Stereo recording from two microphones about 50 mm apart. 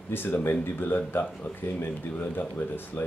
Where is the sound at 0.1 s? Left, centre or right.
Left.